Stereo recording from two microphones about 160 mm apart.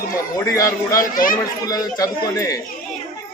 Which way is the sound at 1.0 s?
60° left (ahead or behind).